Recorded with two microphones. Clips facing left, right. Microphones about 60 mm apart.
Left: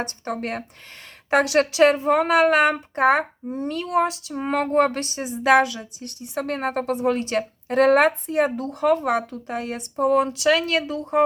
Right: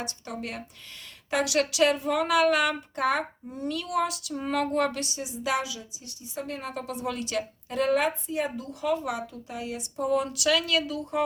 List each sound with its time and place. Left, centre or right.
0.0 s a woman's voice: left